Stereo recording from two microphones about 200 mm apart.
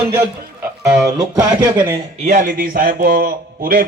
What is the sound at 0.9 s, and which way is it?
Speech, 20° right (ahead or behind).